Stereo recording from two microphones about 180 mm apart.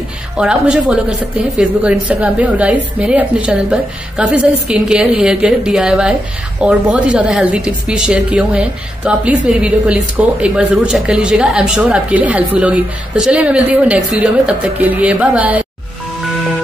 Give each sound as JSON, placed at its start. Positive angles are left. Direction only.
{"t": 0.4, "sound": "a woman's voice", "side_deg": -5}